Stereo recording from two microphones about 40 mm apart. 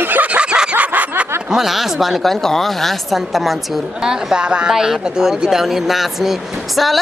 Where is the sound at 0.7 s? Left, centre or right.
Right.